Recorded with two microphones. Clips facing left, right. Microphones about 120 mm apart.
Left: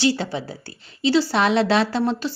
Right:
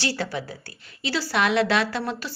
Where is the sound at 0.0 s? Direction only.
20° left (ahead or behind).